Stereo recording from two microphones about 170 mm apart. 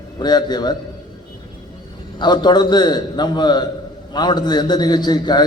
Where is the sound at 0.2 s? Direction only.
25° left (ahead or behind).